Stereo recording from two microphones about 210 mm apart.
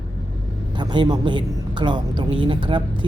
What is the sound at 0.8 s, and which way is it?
A woman's voice, 20° right (ahead or behind).